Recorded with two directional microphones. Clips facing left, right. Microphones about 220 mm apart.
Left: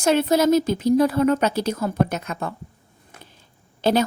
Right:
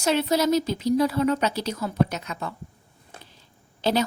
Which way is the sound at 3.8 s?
50° left (ahead or behind).